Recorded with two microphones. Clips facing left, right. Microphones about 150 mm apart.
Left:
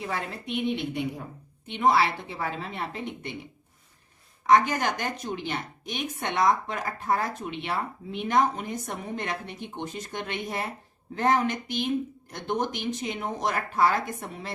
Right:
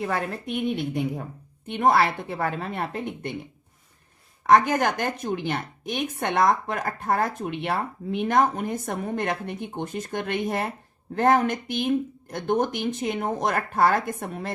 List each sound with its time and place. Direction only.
0.0 s speech: 50° right (ahead or behind)
4.4 s speech: 55° right (ahead or behind)